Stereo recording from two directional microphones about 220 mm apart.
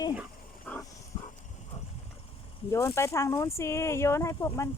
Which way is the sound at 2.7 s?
15° left (ahead or behind).